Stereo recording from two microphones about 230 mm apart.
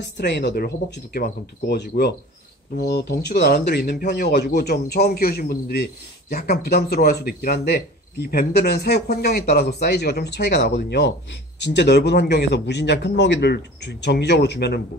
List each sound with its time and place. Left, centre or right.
0.0 s speech: left